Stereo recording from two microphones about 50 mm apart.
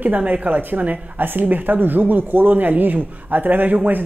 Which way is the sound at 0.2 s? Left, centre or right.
Right.